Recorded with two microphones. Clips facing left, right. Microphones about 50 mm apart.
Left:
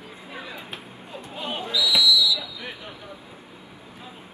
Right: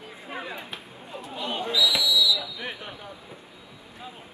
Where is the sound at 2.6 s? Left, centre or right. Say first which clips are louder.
Right 1 dB; right.